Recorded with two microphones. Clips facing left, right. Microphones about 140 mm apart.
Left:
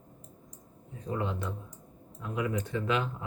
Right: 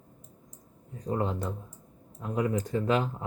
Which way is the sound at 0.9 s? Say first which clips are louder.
Right 3 dB; 40° right (ahead or behind).